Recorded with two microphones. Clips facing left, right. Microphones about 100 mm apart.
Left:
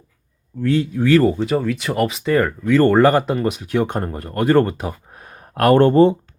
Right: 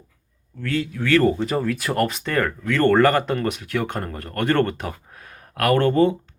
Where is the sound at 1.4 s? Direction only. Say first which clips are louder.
Left 3 dB; centre (ahead or behind).